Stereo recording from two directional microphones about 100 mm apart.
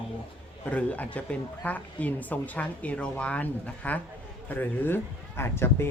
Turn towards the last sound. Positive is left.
turn(degrees=25)  # may be behind; listen again after turning